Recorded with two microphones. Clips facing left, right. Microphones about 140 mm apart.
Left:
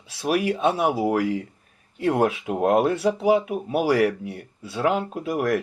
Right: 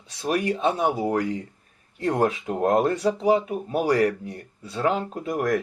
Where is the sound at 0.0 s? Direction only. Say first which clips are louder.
Left 2 dB; 5° left (ahead or behind).